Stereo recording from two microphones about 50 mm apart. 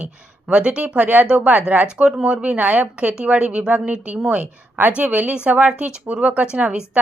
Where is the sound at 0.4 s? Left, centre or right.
Right.